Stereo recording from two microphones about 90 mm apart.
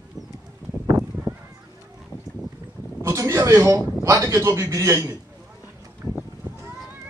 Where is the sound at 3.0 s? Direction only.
35° right (ahead or behind).